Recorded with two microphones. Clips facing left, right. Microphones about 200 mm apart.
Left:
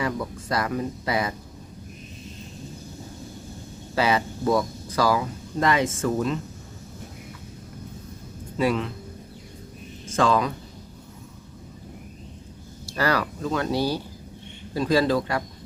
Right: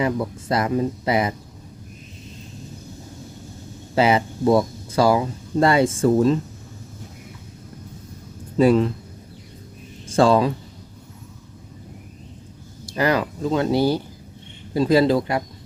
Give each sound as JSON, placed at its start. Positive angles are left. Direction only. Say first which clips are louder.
{"t": 0.0, "sound": "speech", "louder": "right 5 dB", "side_deg": -25}
{"t": 3.9, "sound": "speech", "louder": "right 5 dB", "side_deg": -25}
{"t": 8.5, "sound": "speech", "louder": "right 8 dB", "side_deg": -35}
{"t": 10.1, "sound": "speech", "louder": "right 5 dB", "side_deg": -30}
{"t": 13.0, "sound": "speech", "louder": "right 4 dB", "side_deg": -20}